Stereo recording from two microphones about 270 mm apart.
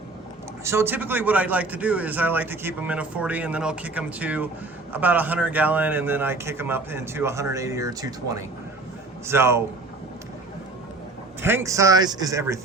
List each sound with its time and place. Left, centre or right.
0.6 s a man's voice: centre
11.4 s a man's voice: centre